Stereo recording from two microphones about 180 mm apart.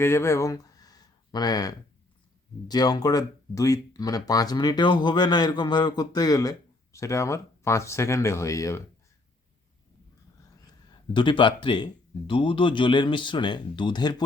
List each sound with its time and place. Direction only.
0.0 s speech: 15° left (ahead or behind)
11.1 s speech: 25° left (ahead or behind)